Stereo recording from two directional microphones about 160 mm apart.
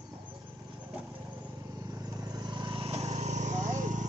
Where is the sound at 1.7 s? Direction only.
20° right (ahead or behind).